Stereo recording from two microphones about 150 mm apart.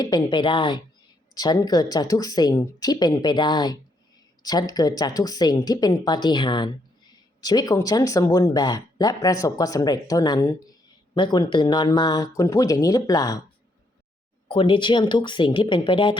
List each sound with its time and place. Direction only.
0.0 s speech: 30° left (ahead or behind)
14.4 s speech: 35° left (ahead or behind)